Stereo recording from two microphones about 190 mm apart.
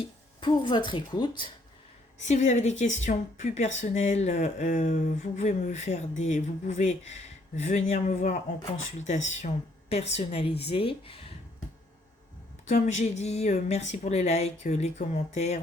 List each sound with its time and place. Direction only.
0.0 s speech: 25° left (ahead or behind)
2.1 s speech: 40° left (ahead or behind)
12.6 s speech: 40° left (ahead or behind)